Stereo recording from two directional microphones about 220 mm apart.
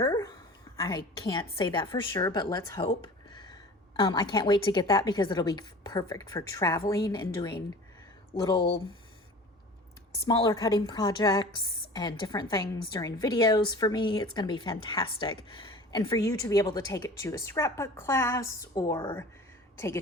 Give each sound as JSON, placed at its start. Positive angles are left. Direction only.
{"t": 0.0, "sound": "a sound", "side_deg": 15}
{"t": 0.8, "sound": "a woman's voice", "side_deg": 20}
{"t": 10.2, "sound": "a woman's voice", "side_deg": 15}